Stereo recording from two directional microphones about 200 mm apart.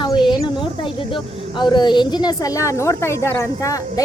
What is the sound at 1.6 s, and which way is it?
A woman's voice, 20° left (ahead or behind).